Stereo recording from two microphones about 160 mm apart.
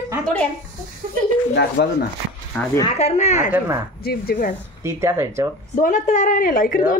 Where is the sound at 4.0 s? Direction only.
70° left (ahead or behind).